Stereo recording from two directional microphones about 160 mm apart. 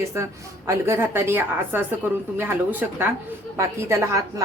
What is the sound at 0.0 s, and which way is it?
A woman's voice, 20° right (ahead or behind).